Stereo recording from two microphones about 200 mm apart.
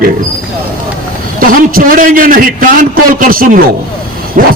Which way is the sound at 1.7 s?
45° right (ahead or behind).